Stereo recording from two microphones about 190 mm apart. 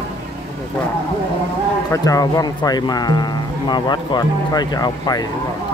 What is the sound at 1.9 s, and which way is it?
Speech, 20° left (ahead or behind).